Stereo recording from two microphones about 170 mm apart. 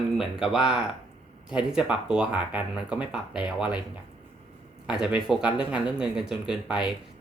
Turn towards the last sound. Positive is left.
turn(degrees=-5)  # may be behind; listen again after turning